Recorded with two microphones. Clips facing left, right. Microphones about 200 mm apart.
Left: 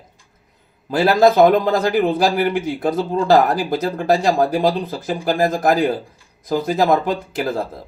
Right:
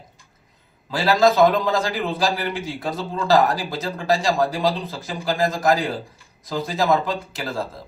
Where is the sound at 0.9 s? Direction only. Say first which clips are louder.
Left 4 dB; 55° left (ahead or behind).